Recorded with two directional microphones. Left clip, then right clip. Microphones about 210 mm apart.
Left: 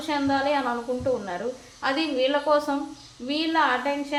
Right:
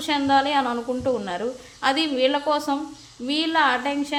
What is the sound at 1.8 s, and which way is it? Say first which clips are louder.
A woman's voice: right 3 dB; 40° right (ahead or behind).